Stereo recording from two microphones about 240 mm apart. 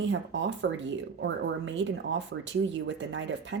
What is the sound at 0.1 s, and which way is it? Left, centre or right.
Speech, right.